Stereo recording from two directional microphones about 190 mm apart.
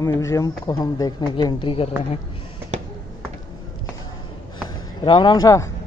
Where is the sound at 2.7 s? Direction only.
40° right (ahead or behind).